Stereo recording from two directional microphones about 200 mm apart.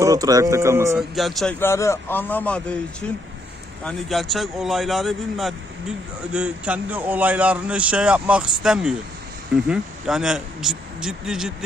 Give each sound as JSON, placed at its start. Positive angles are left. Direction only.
{"t": 0.0, "sound": "speech", "side_deg": -20}
{"t": 0.9, "sound": "speech", "side_deg": 0}
{"t": 1.5, "sound": "a man's voice", "side_deg": 15}